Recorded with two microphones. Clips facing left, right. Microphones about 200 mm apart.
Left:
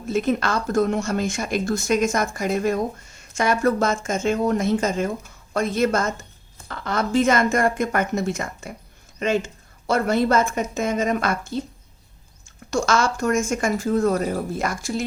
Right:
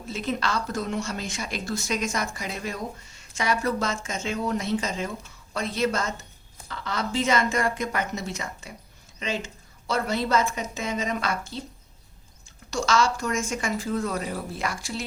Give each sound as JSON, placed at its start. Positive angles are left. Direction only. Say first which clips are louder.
{"t": 0.1, "sound": "speech", "louder": "left 7 dB", "side_deg": 50}
{"t": 12.7, "sound": "speech", "louder": "left 3 dB", "side_deg": 50}